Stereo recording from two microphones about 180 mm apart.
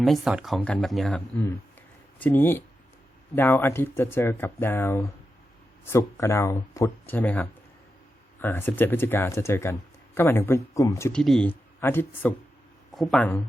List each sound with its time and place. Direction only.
0.0 s speech: centre (ahead or behind)
2.2 s speech: 10° left (ahead or behind)
11.1 s speech: 5° left (ahead or behind)
12.9 s speech: centre (ahead or behind)